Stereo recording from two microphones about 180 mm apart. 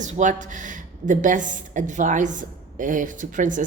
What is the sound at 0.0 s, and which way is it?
A woman's voice, 45° right (ahead or behind).